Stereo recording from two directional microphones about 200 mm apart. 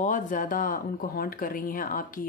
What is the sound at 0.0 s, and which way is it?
Speech, 40° left (ahead or behind).